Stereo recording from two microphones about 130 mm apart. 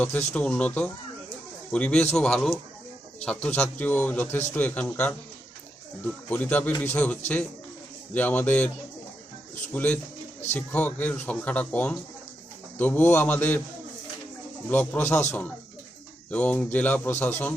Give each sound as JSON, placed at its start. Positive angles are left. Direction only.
{"t": 0.3, "sound": "a man's voice", "side_deg": 10}
{"t": 6.2, "sound": "speech", "side_deg": 15}
{"t": 9.7, "sound": "speech", "side_deg": 10}
{"t": 14.7, "sound": "speech", "side_deg": 15}